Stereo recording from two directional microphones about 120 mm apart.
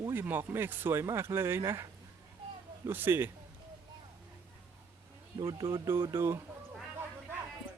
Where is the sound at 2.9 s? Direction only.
15° right (ahead or behind).